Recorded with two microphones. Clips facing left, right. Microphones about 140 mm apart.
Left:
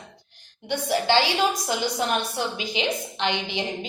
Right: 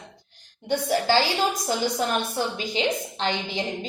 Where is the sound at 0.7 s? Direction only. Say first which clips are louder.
Right 1 dB; 35° right (ahead or behind).